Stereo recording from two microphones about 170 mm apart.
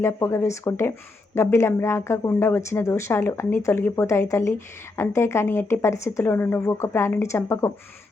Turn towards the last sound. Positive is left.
turn(degrees=15)  # may be behind; listen again after turning